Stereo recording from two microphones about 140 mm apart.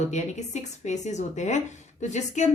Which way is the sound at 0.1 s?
55° left (ahead or behind).